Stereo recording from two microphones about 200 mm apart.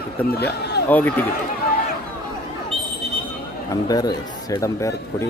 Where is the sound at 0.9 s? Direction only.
10° left (ahead or behind).